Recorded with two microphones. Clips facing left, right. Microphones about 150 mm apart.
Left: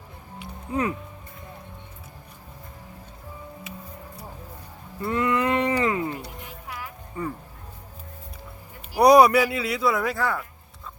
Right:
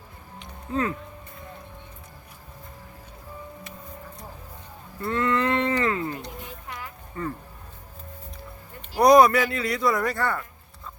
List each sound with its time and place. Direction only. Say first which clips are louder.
0.3 s music: even; 15° left (ahead or behind)
4.9 s livestock: left 1 dB; 15° left (ahead or behind)
6.7 s a sound: left 1 dB; 5° left (ahead or behind)
8.9 s speech: left 1 dB; 10° left (ahead or behind)